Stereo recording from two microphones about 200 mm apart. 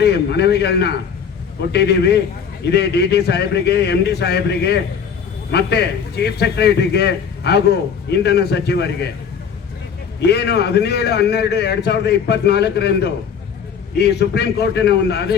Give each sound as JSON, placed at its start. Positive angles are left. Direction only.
{"t": 0.0, "sound": "a man's voice", "side_deg": 55}
{"t": 10.2, "sound": "a man's voice", "side_deg": 55}